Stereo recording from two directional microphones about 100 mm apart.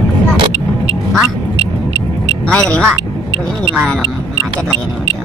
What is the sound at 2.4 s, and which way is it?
Speech, 10° left (ahead or behind).